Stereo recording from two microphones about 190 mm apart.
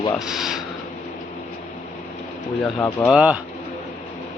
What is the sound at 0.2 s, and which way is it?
Speech, centre (ahead or behind).